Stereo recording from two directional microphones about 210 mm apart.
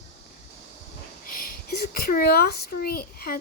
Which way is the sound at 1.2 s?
45° left (ahead or behind).